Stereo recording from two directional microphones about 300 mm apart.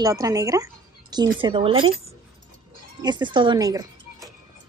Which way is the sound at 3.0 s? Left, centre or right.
Centre.